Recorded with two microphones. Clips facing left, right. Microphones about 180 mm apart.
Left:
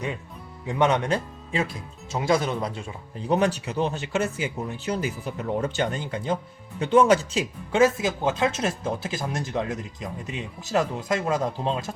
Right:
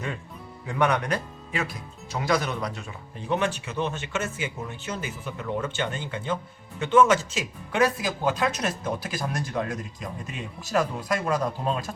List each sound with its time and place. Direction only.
0.7 s speech: 25° left (ahead or behind)